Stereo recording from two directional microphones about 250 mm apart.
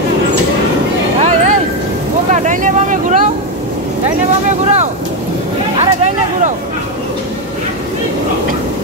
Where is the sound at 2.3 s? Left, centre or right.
Right.